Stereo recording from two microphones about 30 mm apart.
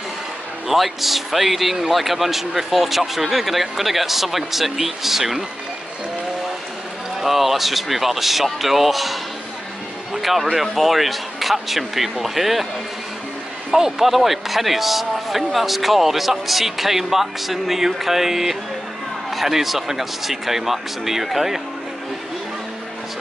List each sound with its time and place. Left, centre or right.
0.7 s speech: centre
7.2 s speech: centre
13.7 s a man's voice: centre
14.0 s speech: centre